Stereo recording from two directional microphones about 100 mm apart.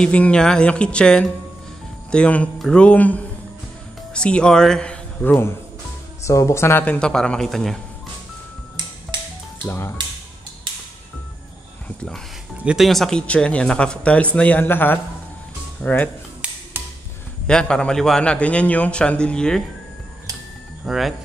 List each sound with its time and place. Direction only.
0.0 s a man's voice: 10° left (ahead or behind)
6.2 s a man's voice: 30° left (ahead or behind); by 7.8 s 5° left (ahead or behind)
9.7 s speech: 25° left (ahead or behind)
12.6 s a man's voice: centre (ahead or behind); by 16.1 s 15° left (ahead or behind)
17.5 s a man's voice: 5° left (ahead or behind)
20.8 s speech: centre (ahead or behind)